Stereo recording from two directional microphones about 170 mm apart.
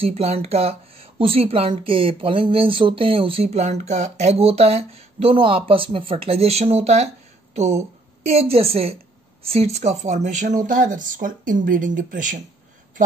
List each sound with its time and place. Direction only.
0.0 s speech: 35° right (ahead or behind)
8.3 s speech: 35° right (ahead or behind)